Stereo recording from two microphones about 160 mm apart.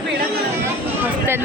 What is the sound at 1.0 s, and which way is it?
Speech, 10° right (ahead or behind).